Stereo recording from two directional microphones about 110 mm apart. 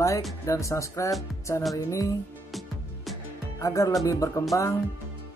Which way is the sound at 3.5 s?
30° left (ahead or behind).